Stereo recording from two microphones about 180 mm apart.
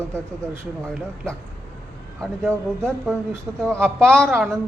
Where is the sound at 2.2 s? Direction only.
5° left (ahead or behind).